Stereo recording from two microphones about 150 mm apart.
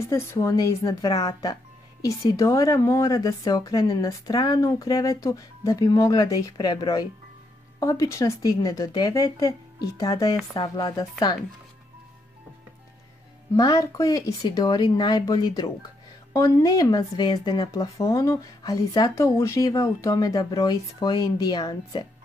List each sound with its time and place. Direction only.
0.1 s speech: 20° left (ahead or behind)
13.6 s speech: 25° left (ahead or behind)